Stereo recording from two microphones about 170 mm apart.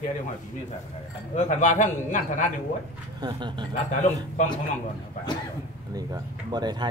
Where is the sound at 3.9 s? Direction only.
50° left (ahead or behind).